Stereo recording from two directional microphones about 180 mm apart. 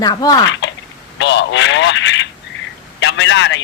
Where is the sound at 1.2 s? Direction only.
80° left.